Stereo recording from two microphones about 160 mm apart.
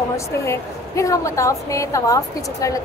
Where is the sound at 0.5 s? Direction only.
20° left (ahead or behind).